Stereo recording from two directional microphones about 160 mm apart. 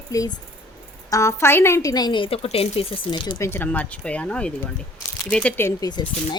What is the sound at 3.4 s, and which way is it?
Speech, 15° left (ahead or behind).